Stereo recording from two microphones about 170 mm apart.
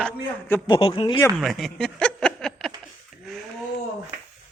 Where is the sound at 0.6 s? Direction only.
25° left (ahead or behind).